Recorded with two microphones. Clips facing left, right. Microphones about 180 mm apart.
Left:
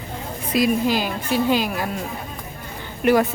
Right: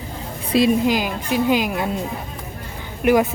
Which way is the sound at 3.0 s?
15° right (ahead or behind).